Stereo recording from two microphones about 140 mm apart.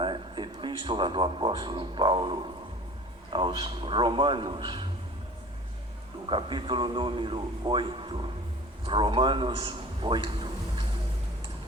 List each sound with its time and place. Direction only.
0.0 s a man's voice: 35° right (ahead or behind)
6.2 s a man's voice: 35° right (ahead or behind)